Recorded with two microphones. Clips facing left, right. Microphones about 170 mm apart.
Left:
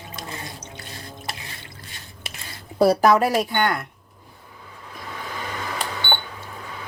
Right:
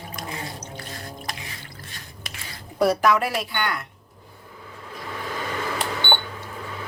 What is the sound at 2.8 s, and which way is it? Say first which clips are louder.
A woman's voice: left 3 dB; 35° left (ahead or behind).